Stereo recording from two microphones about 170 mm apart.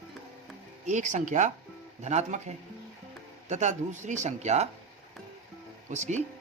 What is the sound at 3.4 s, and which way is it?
Speech, 45° right (ahead or behind).